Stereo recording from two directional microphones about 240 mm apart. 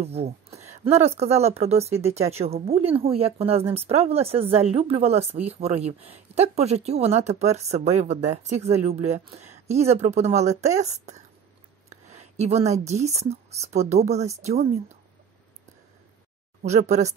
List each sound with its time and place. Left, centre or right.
0.0 s a woman's voice: right
16.6 s speech: right